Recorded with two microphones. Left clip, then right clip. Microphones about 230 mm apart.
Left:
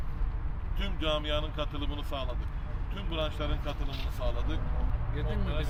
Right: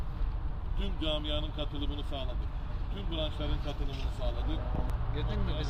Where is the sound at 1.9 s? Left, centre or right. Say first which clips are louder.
Left 2 dB; left.